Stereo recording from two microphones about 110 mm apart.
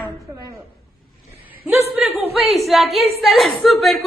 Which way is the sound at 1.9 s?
5° right (ahead or behind).